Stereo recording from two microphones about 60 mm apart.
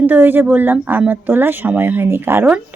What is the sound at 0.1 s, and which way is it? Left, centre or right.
A woman's voice, right.